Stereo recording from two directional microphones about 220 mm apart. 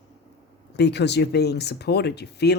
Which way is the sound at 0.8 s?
50° left (ahead or behind).